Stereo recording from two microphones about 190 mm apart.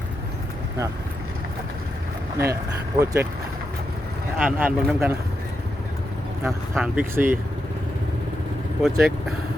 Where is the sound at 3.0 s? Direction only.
15° right (ahead or behind).